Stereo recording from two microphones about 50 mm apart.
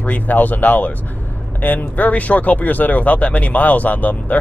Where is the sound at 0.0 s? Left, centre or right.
Left.